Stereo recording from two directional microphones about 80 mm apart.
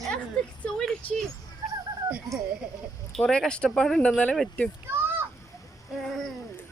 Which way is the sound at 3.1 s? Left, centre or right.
Centre.